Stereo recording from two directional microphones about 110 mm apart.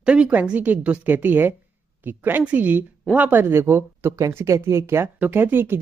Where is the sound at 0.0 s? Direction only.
10° right (ahead or behind).